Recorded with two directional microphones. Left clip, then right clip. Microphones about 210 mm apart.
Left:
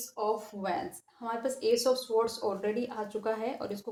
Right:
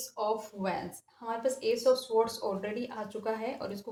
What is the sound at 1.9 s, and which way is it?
Speech, 30° left (ahead or behind).